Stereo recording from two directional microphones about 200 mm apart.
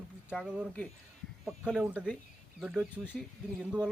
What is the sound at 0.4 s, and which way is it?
Speech, 5° right (ahead or behind).